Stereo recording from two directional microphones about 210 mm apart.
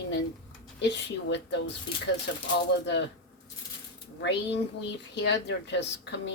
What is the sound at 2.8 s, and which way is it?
Speech, 55° left (ahead or behind).